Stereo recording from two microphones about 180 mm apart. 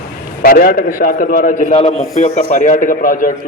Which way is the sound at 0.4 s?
55° left (ahead or behind).